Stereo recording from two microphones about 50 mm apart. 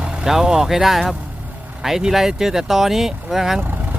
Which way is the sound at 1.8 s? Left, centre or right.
Centre.